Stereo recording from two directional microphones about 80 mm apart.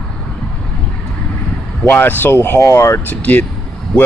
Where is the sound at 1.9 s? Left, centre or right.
Left.